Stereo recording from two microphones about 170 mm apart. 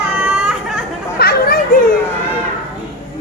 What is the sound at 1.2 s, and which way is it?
Children playing, 65° left (ahead or behind).